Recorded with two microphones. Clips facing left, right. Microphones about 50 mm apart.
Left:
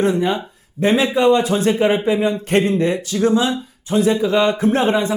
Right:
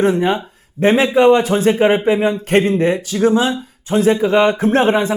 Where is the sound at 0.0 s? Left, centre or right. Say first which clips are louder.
Right 2 dB; right.